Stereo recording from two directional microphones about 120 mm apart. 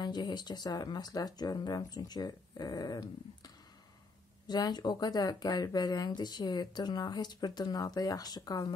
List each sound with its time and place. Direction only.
0.0 s speech: 35° left (ahead or behind)